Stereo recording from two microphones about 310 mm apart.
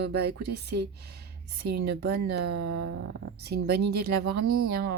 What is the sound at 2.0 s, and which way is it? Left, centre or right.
A woman's voice, right.